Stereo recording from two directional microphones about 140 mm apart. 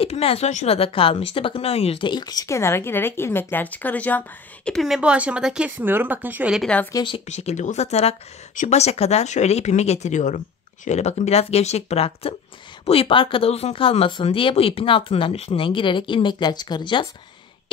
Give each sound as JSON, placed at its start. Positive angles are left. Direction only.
{"t": 0.0, "sound": "speech", "side_deg": 45}
{"t": 4.6, "sound": "speech", "side_deg": 0}
{"t": 6.6, "sound": "speech", "side_deg": 10}
{"t": 6.9, "sound": "speech", "side_deg": 30}
{"t": 7.2, "sound": "speech", "side_deg": 50}